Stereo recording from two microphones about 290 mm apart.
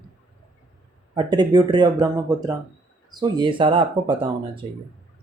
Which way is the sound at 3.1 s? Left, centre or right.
Centre.